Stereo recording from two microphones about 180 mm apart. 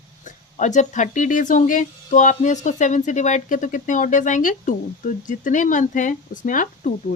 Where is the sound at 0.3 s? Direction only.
45° left (ahead or behind).